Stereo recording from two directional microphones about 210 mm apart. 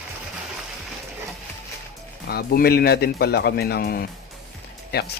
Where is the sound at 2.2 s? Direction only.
45° left (ahead or behind).